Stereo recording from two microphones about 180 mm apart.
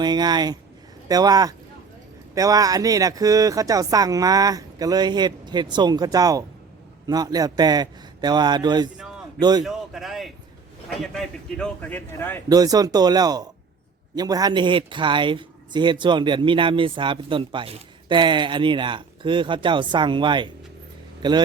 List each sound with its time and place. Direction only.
0.0 s speech: 25° right (ahead or behind)
9.6 s a sound: centre (ahead or behind)
11.0 s speech: centre (ahead or behind)
12.5 s speech: 20° right (ahead or behind)